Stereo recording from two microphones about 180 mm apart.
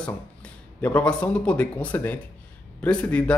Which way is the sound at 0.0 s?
5° left (ahead or behind).